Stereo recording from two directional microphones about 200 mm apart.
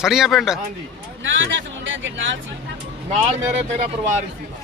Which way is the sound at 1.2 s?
70° right (ahead or behind).